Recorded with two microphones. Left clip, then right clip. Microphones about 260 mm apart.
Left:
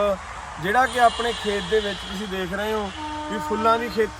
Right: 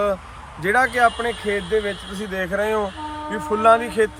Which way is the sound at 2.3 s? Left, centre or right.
Right.